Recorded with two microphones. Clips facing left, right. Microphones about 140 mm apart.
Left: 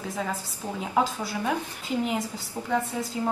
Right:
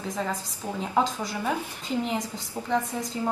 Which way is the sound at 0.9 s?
5° left (ahead or behind).